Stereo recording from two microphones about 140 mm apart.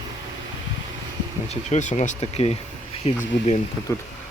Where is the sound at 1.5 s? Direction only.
55° left (ahead or behind).